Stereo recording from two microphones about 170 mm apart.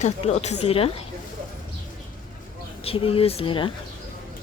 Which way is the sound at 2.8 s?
35° left (ahead or behind).